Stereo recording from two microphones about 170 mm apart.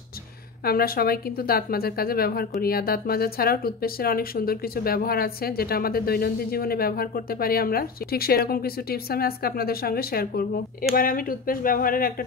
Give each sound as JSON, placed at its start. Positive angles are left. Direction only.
{"t": 0.7, "sound": "speech", "side_deg": 60}